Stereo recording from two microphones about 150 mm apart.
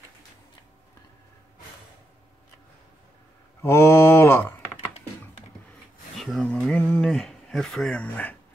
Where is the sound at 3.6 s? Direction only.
15° left (ahead or behind).